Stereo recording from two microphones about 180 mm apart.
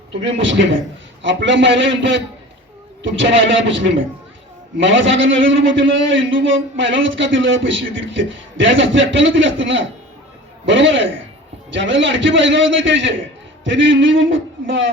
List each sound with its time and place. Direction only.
0.1 s a man's voice: 30° right (ahead or behind)
1.2 s a man's voice: 90° right